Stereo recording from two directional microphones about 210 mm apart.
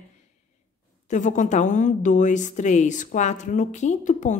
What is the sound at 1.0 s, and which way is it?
A woman's voice, 35° left (ahead or behind).